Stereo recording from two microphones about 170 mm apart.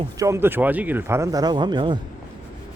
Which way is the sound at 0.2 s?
15° right (ahead or behind).